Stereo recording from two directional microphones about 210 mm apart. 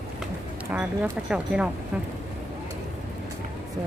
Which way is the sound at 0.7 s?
10° right (ahead or behind).